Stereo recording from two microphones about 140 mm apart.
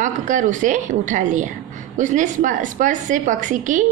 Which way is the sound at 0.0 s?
65° right (ahead or behind).